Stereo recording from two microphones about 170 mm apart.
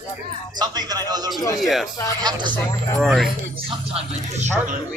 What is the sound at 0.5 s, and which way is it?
Speech, 25° right (ahead or behind).